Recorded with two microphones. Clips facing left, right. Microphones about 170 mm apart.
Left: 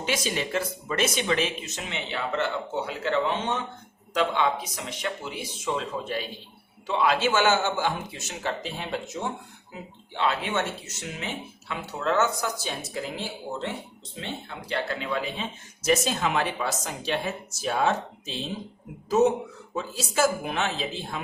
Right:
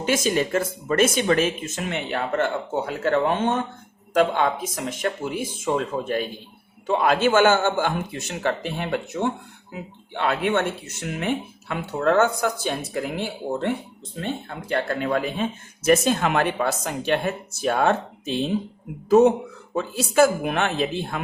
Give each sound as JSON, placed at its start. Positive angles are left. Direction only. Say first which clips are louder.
{"t": 0.0, "sound": "speech", "louder": "right 7 dB", "side_deg": -50}